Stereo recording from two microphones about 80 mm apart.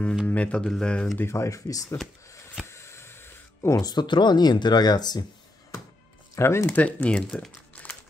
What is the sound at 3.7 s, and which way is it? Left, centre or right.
Speech, left.